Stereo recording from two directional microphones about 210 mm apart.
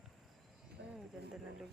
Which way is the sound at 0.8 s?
55° right (ahead or behind).